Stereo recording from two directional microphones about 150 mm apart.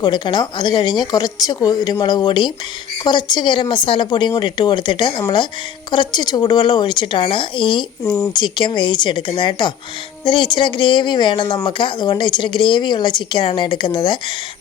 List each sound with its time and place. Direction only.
0.0 s a woman's voice: 30° left (ahead or behind)
8.0 s speech: 15° left (ahead or behind)
8.3 s a woman's voice: 30° left (ahead or behind)